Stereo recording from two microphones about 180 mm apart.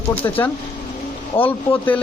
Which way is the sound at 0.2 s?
10° left (ahead or behind).